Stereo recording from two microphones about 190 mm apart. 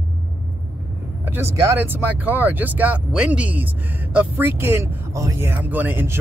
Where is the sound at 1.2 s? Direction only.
10° right (ahead or behind).